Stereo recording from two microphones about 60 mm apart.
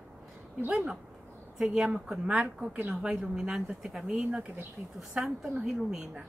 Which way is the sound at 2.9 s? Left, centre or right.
Centre.